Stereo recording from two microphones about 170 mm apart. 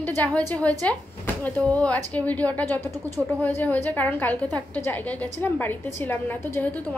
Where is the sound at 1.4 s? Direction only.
10° left (ahead or behind).